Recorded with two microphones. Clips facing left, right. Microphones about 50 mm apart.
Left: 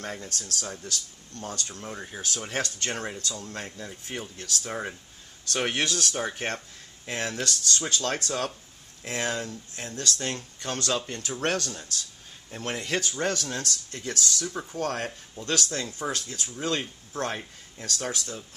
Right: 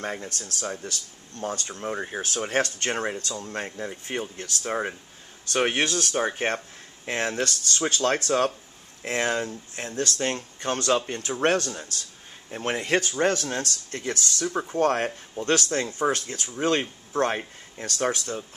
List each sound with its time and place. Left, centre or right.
0.0 s speech: right
16.8 s speech: right